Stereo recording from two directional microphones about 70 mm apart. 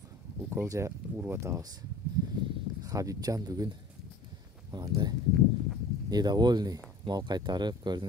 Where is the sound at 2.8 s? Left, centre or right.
Right.